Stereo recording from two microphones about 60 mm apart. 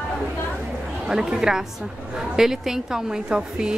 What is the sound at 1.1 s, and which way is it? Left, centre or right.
Speech, centre.